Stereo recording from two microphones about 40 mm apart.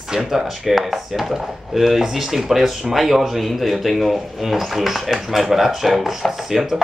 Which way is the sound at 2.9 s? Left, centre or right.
Centre.